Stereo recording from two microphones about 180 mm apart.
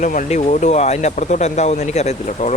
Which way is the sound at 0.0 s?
45° left (ahead or behind).